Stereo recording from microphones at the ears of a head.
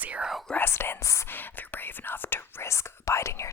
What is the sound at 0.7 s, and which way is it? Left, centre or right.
Whispering, left.